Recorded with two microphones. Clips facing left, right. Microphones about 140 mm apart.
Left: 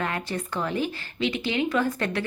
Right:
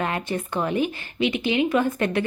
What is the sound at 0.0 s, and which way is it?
A woman's voice, 20° right (ahead or behind).